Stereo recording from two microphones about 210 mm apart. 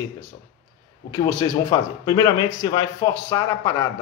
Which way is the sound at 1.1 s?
20° left (ahead or behind).